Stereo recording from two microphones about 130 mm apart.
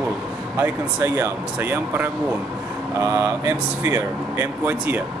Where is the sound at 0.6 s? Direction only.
20° right (ahead or behind).